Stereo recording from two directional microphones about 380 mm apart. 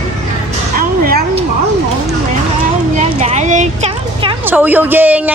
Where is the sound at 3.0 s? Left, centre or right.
Centre.